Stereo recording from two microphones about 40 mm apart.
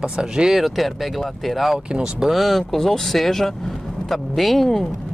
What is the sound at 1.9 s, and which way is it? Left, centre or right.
Speech, centre.